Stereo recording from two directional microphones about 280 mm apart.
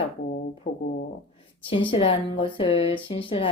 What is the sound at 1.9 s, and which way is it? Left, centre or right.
Speech, centre.